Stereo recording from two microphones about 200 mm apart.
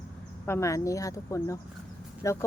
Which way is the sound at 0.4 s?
15° left (ahead or behind).